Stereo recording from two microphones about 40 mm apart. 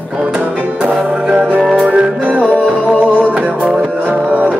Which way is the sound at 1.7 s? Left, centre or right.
Right.